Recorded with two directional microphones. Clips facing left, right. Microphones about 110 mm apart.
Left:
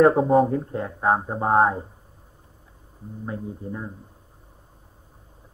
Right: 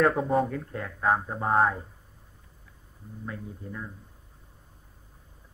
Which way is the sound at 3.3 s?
25° left (ahead or behind).